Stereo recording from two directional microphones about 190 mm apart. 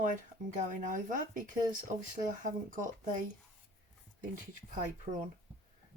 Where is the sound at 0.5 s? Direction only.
40° right (ahead or behind).